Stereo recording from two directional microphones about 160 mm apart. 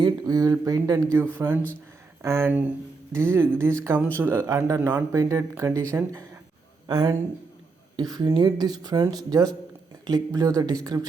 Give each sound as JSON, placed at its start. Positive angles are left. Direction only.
{"t": 0.0, "sound": "speech", "side_deg": -20}
{"t": 6.8, "sound": "speech", "side_deg": -25}